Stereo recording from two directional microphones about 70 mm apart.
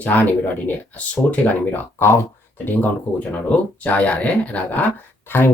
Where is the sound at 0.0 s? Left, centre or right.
Left.